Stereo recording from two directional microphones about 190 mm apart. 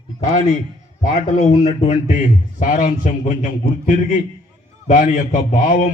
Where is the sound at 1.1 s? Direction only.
40° left (ahead or behind).